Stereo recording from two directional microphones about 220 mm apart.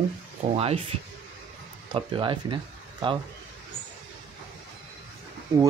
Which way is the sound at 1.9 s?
20° right (ahead or behind).